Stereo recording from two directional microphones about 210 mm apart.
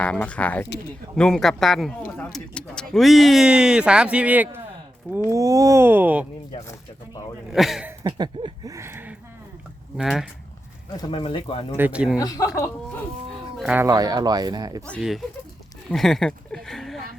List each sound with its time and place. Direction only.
0.0 s speech: 5° left (ahead or behind)
6.7 s speech: 15° left (ahead or behind)
7.5 s speech: centre (ahead or behind)
8.0 s a sound: 20° right (ahead or behind)
10.0 s speech: centre (ahead or behind)
10.9 s speech: 20° left (ahead or behind)
11.8 s speech: 5° right (ahead or behind)
12.2 s speech: 15° left (ahead or behind)
13.6 s speech: 5° right (ahead or behind)
14.8 s speech: centre (ahead or behind)